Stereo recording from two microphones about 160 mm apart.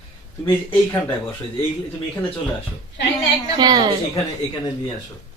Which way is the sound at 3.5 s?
25° right (ahead or behind).